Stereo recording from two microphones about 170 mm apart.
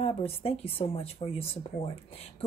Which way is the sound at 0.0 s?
35° left (ahead or behind).